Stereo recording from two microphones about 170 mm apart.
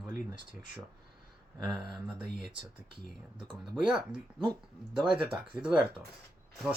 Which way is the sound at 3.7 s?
5° right (ahead or behind).